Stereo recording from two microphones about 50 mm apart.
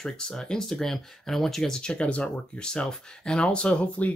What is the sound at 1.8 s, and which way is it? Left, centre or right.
Speech, left.